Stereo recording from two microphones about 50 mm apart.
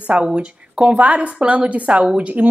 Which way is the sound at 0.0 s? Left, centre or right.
Right.